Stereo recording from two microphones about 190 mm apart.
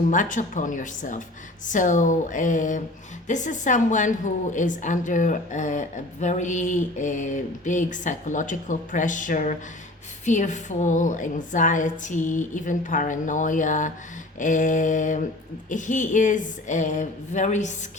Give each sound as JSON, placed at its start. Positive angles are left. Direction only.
{"t": 0.1, "sound": "a woman's voice", "side_deg": 40}